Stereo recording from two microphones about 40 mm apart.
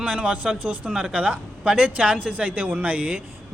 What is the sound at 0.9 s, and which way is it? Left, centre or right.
A man's voice, centre.